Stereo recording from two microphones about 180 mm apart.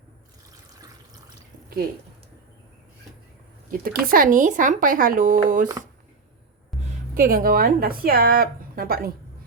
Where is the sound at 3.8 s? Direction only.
55° right (ahead or behind).